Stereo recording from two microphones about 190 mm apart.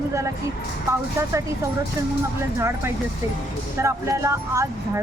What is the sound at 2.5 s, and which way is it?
Speech, 15° right (ahead or behind).